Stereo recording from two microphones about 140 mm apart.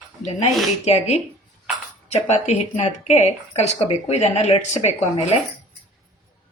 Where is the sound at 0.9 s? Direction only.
50° left (ahead or behind).